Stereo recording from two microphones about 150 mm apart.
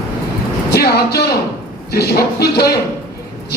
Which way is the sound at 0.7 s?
90° left.